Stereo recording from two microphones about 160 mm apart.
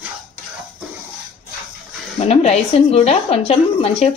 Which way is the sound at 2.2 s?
40° left (ahead or behind).